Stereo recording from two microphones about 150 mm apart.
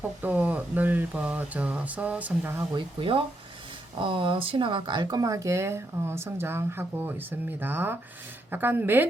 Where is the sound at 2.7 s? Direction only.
35° right (ahead or behind); by 7.9 s 15° right (ahead or behind).